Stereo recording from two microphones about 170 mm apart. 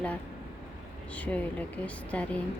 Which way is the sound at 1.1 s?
10° left (ahead or behind).